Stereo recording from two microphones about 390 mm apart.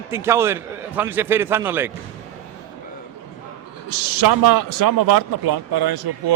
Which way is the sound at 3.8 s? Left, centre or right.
Right.